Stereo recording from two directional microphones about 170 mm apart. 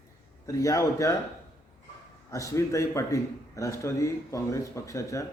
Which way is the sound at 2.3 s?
20° left (ahead or behind).